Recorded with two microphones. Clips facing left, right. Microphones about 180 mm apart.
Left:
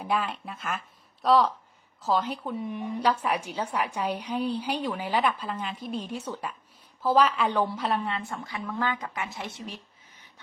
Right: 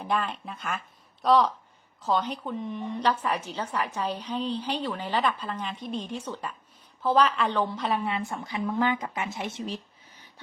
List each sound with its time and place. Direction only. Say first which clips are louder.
0.0 s a woman's voice: even; 5° left (ahead or behind)
7.9 s a woman's voice: right 1 dB; 10° right (ahead or behind)
8.5 s speech: right 5 dB; 20° right (ahead or behind)